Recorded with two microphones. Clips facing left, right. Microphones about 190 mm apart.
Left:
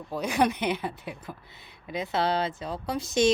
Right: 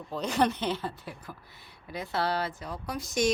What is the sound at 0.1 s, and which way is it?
Speech, 10° left (ahead or behind).